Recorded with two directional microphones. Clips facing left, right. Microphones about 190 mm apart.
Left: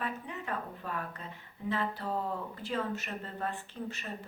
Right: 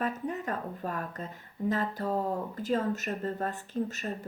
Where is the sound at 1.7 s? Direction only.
45° right (ahead or behind).